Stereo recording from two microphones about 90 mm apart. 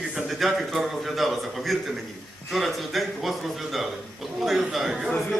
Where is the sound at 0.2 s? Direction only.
Centre (ahead or behind).